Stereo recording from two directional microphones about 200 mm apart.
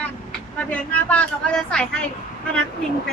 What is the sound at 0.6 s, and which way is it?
Speech, 10° left (ahead or behind).